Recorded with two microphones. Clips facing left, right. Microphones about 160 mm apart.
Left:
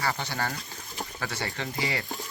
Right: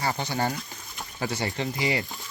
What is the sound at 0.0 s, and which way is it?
Speech, 20° right (ahead or behind).